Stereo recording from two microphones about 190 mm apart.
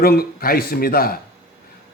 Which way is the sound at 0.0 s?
55° left (ahead or behind).